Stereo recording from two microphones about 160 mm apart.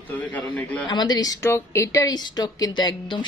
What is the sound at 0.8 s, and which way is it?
Speech, 25° left (ahead or behind).